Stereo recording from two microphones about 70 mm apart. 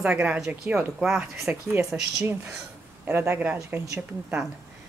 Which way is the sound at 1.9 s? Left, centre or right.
Centre.